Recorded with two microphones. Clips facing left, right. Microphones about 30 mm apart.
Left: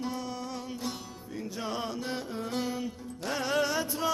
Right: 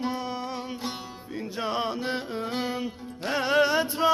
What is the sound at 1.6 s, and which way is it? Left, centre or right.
Music, right.